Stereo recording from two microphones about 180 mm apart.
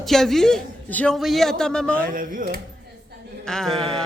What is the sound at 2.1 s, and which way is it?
Speech, 50° right (ahead or behind).